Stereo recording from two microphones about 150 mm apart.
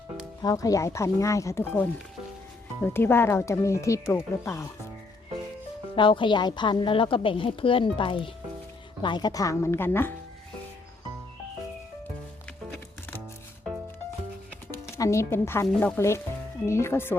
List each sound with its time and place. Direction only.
0.4 s speech: 20° left (ahead or behind)
6.0 s a woman's voice: 35° left (ahead or behind); by 10.1 s 15° left (ahead or behind)
14.7 s speech: 20° left (ahead or behind)